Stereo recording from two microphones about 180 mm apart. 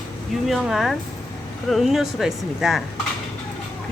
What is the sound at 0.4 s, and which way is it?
Speech, centre (ahead or behind).